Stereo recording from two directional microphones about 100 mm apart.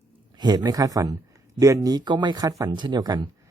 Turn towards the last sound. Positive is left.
turn(degrees=-45)  # may be behind; listen again after turning